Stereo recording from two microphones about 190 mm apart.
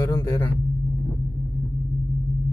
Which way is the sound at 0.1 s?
10° left (ahead or behind).